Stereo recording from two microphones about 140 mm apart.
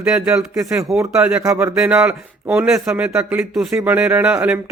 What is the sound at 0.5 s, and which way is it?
Speech, 20° right (ahead or behind).